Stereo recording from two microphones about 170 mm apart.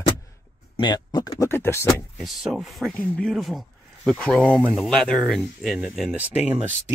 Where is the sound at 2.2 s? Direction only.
Centre (ahead or behind).